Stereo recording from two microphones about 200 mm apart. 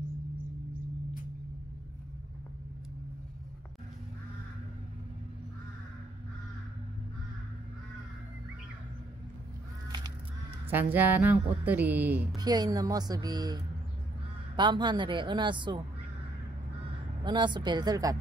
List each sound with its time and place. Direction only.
10.7 s speech: 10° right (ahead or behind)
12.4 s a woman's voice: 20° right (ahead or behind)
14.6 s a woman's voice: 20° right (ahead or behind)
17.2 s a woman's voice: 25° right (ahead or behind)